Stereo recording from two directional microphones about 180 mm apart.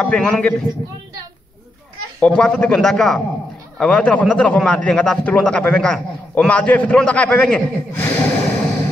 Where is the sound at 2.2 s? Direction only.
5° left (ahead or behind).